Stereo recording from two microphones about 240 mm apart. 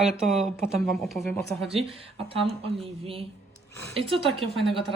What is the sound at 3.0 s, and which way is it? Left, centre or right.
Speech, right.